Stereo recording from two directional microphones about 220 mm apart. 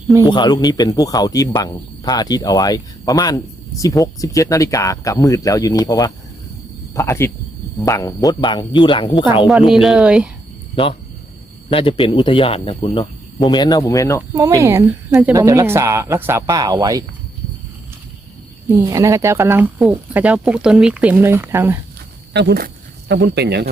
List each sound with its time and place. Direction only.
0.3 s speech: 20° left (ahead or behind)
9.5 s speech: centre (ahead or behind)
11.7 s speech: 25° left (ahead or behind)
14.3 s speech: 15° right (ahead or behind)
18.9 s speech: 15° right (ahead or behind)
22.3 s speech: 50° right (ahead or behind)